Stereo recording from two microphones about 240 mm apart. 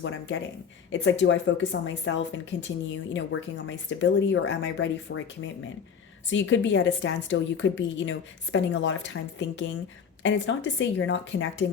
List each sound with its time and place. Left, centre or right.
0.9 s speech: left